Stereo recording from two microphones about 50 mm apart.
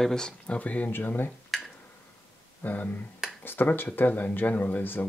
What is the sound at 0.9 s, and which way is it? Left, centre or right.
Speech, left.